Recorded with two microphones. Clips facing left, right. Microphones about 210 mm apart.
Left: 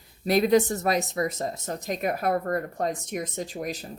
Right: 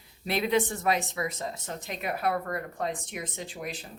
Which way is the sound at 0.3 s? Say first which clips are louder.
Left 6 dB; 40° left (ahead or behind).